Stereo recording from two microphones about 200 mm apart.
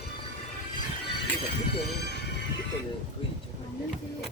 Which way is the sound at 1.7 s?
55° left (ahead or behind).